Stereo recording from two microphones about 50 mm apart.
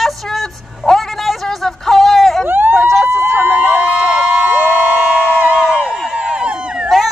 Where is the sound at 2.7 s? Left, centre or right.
Centre.